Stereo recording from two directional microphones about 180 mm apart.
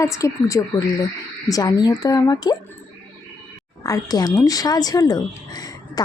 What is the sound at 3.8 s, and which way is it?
Speech, 20° left (ahead or behind).